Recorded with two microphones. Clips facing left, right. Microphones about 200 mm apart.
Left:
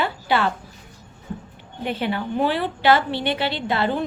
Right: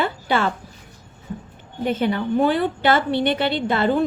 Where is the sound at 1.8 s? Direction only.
45° right (ahead or behind).